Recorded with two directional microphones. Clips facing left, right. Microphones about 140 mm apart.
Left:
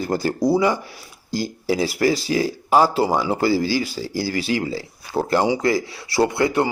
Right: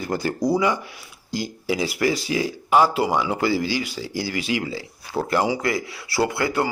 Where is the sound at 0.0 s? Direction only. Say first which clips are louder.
Left 3 dB; 35° left (ahead or behind).